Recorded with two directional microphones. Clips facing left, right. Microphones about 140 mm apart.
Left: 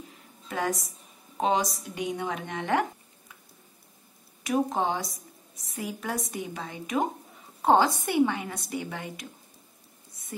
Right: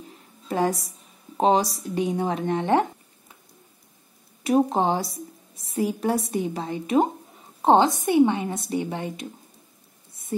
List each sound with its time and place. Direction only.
0.5 s a woman's voice: 30° right (ahead or behind)
4.4 s a woman's voice: 30° right (ahead or behind)